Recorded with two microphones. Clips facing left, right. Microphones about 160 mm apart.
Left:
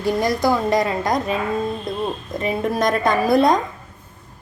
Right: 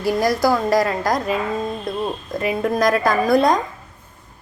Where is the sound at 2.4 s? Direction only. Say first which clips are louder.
Right 2 dB; centre (ahead or behind).